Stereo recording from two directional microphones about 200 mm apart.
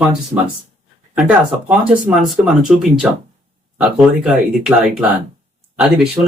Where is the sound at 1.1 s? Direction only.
5° right (ahead or behind).